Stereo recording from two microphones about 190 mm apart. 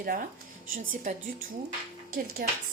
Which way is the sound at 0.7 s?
45° right (ahead or behind).